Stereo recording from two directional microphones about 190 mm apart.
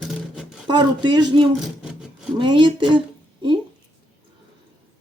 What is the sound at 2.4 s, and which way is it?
Speech, 25° right (ahead or behind).